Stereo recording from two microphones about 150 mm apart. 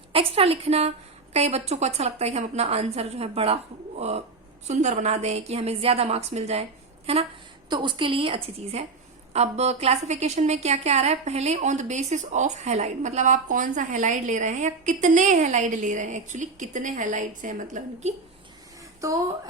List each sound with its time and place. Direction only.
0.1 s a woman's voice: 40° right (ahead or behind)
7.7 s a woman's voice: 30° right (ahead or behind); by 18.1 s 55° right (ahead or behind)
19.0 s a woman's voice: 20° right (ahead or behind)